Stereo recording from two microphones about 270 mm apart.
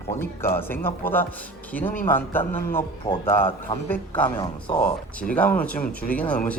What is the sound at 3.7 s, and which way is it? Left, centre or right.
Speech, centre.